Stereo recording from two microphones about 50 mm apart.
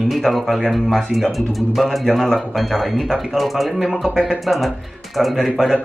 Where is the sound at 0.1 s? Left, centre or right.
Centre.